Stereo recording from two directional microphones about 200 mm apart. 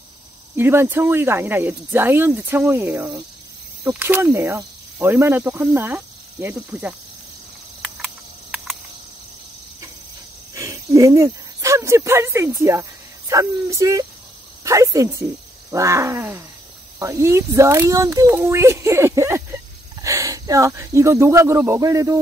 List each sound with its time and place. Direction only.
0.6 s speech: 10° right (ahead or behind)
7.8 s cricket: centre (ahead or behind)
10.5 s speech: 15° right (ahead or behind)